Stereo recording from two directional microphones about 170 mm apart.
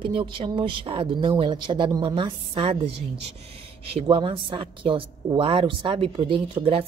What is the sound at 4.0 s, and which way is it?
A woman's voice, 30° right (ahead or behind).